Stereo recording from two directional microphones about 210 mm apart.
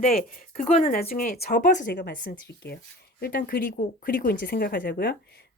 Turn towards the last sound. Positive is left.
turn(degrees=45)  # may be behind; listen again after turning